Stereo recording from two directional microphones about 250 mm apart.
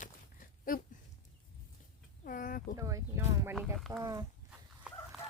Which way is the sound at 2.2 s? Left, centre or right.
Left.